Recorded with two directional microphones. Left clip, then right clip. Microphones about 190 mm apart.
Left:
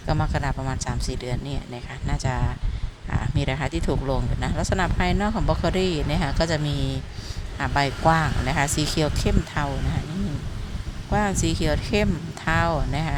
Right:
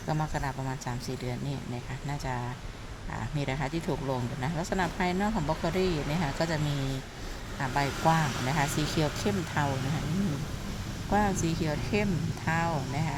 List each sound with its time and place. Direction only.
0.1 s speech: 20° left (ahead or behind)
7.6 s speech: 20° left (ahead or behind)
11.1 s speech: 15° left (ahead or behind)